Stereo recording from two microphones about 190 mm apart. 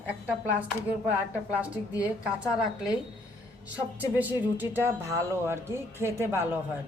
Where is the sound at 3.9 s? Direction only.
10° right (ahead or behind).